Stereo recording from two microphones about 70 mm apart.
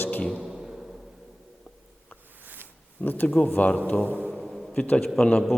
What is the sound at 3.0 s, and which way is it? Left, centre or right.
Speech, left.